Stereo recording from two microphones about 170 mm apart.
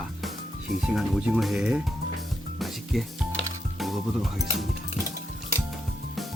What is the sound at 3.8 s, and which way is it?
Speech, centre (ahead or behind).